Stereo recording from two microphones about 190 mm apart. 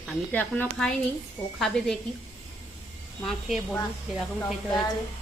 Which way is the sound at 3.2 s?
5° left (ahead or behind).